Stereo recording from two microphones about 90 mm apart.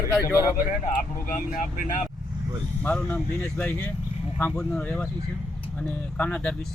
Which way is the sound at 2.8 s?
20° left (ahead or behind).